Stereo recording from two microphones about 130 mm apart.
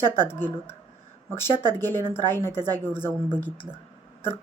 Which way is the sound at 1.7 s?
15° left (ahead or behind).